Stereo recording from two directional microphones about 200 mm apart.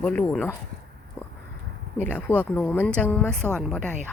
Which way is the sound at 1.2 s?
5° left (ahead or behind).